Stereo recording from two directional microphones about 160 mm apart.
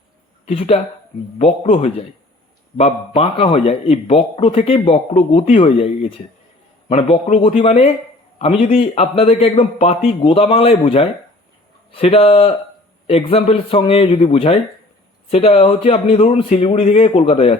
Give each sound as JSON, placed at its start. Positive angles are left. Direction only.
{"t": 0.4, "sound": "a man's voice", "side_deg": 35}